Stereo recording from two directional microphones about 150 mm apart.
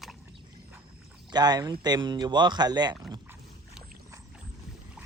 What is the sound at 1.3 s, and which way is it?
Speech, 30° right (ahead or behind).